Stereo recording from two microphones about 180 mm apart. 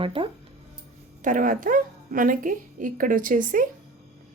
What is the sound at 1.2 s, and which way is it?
Speech, 45° right (ahead or behind).